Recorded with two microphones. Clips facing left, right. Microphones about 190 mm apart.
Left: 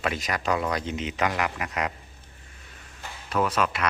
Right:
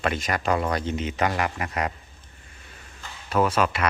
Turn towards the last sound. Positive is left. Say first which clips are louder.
# right 3 dB
turn(degrees=0)  # may be behind; listen again after turning